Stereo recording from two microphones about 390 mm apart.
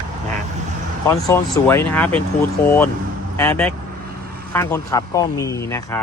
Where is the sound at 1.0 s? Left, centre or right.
Centre.